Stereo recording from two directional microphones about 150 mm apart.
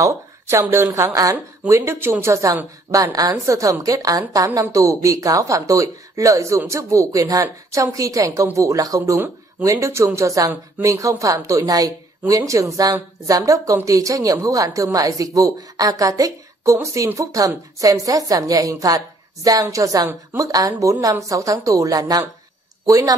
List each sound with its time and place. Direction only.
0.0 s a woman's voice: 20° right (ahead or behind)